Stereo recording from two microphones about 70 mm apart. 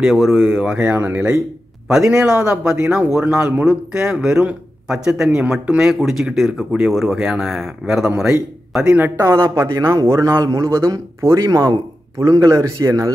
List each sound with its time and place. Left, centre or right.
0.0 s speech: centre
0.8 s speech: right
1.9 s a man's voice: centre
5.8 s speech: centre
9.2 s speech: right